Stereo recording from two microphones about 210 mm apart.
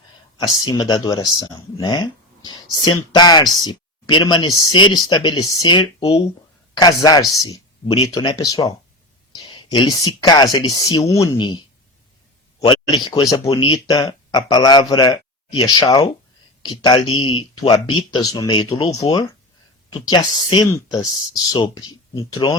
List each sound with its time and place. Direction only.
0.3 s speech: 20° left (ahead or behind)
13.1 s speech: 20° left (ahead or behind)